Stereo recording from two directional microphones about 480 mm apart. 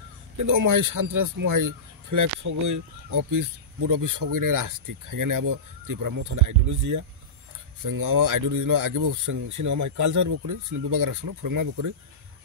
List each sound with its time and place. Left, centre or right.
0.5 s speech: right